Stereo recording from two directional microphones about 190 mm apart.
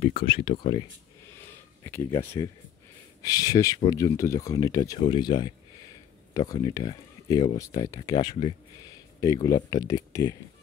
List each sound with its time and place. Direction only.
0.0 s speech: 30° left (ahead or behind)
1.9 s speech: 15° left (ahead or behind)